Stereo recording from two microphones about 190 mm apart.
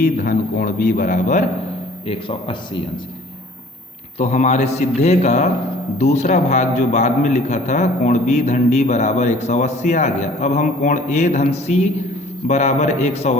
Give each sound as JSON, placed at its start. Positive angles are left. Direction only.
{"t": 0.0, "sound": "a man's voice", "side_deg": 45}
{"t": 2.0, "sound": "speech", "side_deg": 25}
{"t": 4.2, "sound": "a man's voice", "side_deg": 35}